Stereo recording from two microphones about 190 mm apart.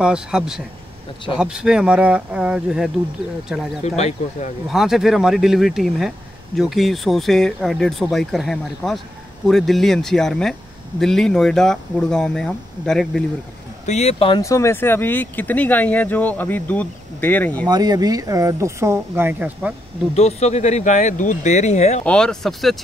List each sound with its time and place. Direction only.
0.0 s speech: 5° right (ahead or behind)
3.8 s speech: 35° left (ahead or behind)
4.6 s speech: centre (ahead or behind)
13.8 s speech: 35° left (ahead or behind)
14.4 s speech: 15° left (ahead or behind)
17.6 s speech: 20° right (ahead or behind)
20.2 s speech: 35° left (ahead or behind)
22.0 s speech: 5° left (ahead or behind)